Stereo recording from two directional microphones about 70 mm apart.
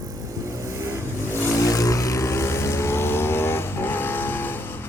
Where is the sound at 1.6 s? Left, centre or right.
Left.